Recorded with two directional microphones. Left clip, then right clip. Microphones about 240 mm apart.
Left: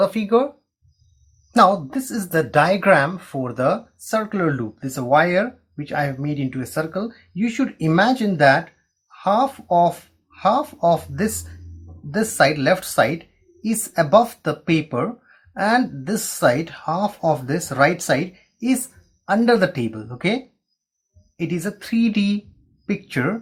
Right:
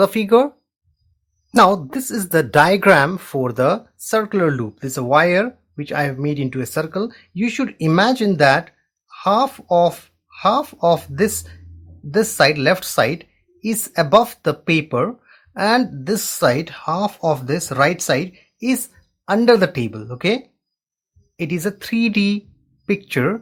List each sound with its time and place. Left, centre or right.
0.0 s speech: right
1.5 s speech: right